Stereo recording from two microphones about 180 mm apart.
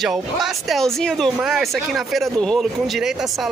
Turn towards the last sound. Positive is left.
turn(degrees=0)  # may be behind; listen again after turning